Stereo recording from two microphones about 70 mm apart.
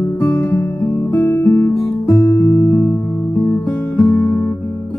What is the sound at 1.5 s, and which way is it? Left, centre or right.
Guitar, left.